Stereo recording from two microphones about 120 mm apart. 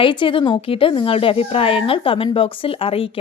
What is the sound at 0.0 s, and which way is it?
Speech, 45° left (ahead or behind).